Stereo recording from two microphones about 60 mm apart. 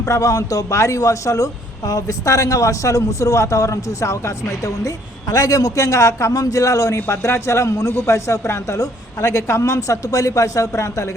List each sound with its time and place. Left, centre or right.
0.0 s a man's voice: left
5.3 s a man's voice: left
6.3 s a man's voice: left
6.9 s a man's voice: left